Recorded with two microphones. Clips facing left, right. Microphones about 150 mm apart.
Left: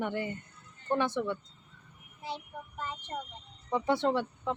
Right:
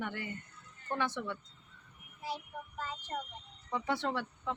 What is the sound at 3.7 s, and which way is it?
Speech, 25° left (ahead or behind).